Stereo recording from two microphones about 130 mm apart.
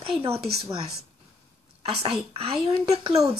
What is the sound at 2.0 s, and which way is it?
Speech, 45° right (ahead or behind).